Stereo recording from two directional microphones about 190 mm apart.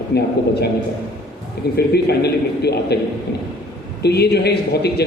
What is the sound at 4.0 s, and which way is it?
A man's voice, 60° left (ahead or behind).